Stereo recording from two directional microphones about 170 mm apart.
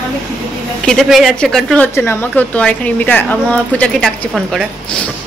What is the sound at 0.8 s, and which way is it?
A woman's voice, centre (ahead or behind).